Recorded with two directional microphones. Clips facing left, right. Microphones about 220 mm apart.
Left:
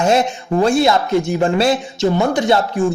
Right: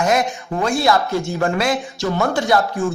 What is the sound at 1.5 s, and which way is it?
Speech, 30° left (ahead or behind).